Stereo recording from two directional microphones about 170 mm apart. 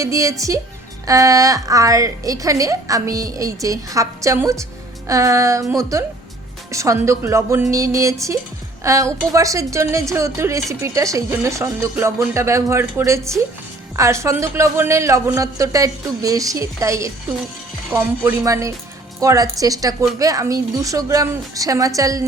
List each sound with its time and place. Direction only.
0.0 s a woman's voice: 20° right (ahead or behind)